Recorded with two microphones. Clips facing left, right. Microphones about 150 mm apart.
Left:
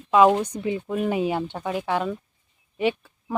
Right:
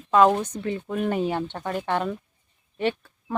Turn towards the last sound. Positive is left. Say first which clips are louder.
# left 2 dB
turn(degrees=10)  # may be behind; listen again after turning